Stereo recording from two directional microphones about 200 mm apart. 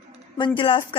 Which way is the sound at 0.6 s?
25° left (ahead or behind).